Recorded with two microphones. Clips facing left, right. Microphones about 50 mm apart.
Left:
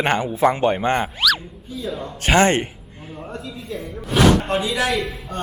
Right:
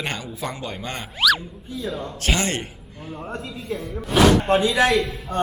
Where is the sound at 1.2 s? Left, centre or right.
Centre.